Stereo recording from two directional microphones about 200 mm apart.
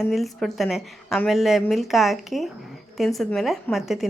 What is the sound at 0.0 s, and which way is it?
A woman's voice, centre (ahead or behind).